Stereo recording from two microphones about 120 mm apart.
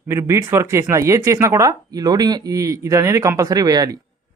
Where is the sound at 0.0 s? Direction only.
20° right (ahead or behind).